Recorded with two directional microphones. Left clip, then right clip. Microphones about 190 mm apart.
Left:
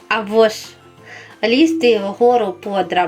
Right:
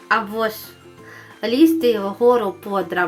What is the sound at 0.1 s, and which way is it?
Speech, 15° left (ahead or behind).